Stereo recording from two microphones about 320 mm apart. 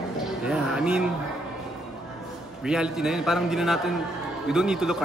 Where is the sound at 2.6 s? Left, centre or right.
Centre.